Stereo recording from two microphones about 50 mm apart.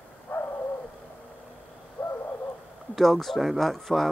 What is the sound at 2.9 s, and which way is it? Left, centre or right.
Speech, centre.